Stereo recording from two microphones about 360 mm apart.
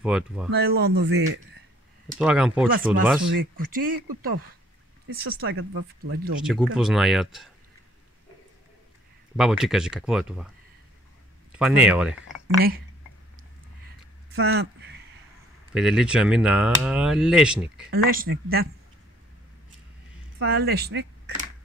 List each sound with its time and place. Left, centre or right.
0.0 s speech: centre
0.5 s speech: right
2.1 s speech: centre
3.3 s speech: right
6.4 s speech: centre
9.4 s speech: centre
11.5 s speech: centre
14.3 s speech: right
15.7 s speech: centre
17.8 s speech: right
20.4 s speech: right